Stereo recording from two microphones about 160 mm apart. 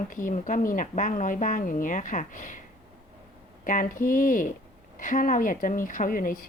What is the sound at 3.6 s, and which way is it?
A woman's voice, 55° left (ahead or behind).